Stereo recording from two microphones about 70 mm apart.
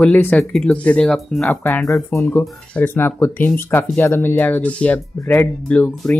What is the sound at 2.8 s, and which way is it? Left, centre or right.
Speech, left.